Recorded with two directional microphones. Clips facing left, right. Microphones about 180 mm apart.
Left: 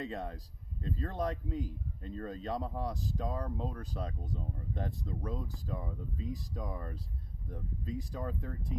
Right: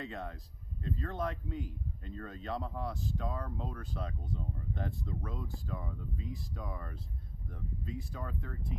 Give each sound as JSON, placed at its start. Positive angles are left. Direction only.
{"t": 0.0, "sound": "a man's voice", "side_deg": 35}